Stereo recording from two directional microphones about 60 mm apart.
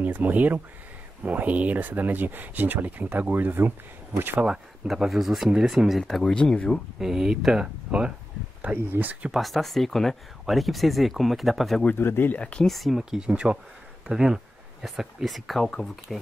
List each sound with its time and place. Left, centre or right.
0.0 s speech: right
4.5 s speech: centre
6.3 s speech: centre
7.0 s speech: centre; by 9.3 s right
9.3 s speech: centre
12.0 s speech: left
12.4 s speech: centre
12.6 s speech: centre